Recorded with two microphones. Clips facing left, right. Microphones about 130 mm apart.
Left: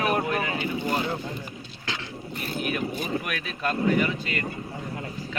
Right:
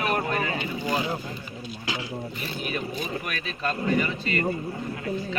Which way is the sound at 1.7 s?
10° right (ahead or behind).